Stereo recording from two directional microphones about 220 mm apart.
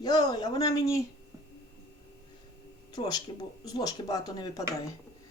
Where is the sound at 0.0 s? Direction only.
20° left (ahead or behind).